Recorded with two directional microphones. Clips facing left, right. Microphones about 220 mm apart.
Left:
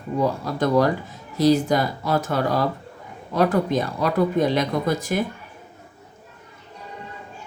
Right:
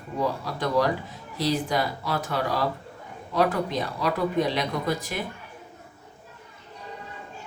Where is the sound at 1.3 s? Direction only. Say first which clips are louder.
Left 8 dB; 45° left (ahead or behind).